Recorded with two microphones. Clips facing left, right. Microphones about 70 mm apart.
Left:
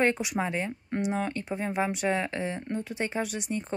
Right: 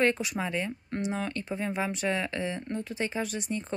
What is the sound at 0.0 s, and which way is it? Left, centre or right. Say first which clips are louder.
Speech: left 1 dB; centre.